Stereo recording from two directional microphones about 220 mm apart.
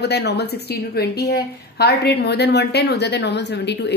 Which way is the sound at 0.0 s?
50° left (ahead or behind).